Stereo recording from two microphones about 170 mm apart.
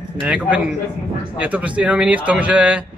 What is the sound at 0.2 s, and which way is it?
A man's voice, 5° right (ahead or behind).